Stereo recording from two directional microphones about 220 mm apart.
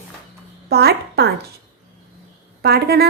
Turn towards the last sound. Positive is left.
turn(degrees=-45)  # may be behind; listen again after turning